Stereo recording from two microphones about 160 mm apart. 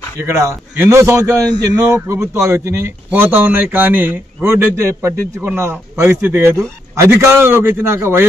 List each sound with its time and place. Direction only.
0.2 s speech: 15° right (ahead or behind)